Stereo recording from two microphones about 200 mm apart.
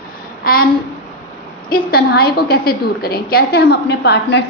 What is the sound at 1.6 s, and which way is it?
A woman's voice, 50° left (ahead or behind).